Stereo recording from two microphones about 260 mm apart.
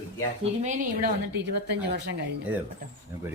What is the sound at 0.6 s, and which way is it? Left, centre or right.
A woman's voice, right.